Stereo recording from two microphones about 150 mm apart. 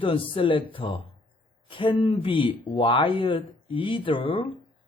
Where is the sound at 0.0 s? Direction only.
35° left (ahead or behind).